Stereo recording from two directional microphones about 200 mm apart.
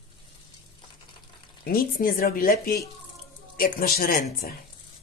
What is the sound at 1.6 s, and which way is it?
Speech, 45° left (ahead or behind).